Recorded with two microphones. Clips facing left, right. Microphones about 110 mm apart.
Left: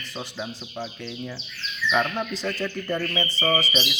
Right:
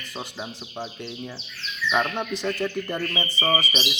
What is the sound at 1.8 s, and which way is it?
Speech, 20° right (ahead or behind).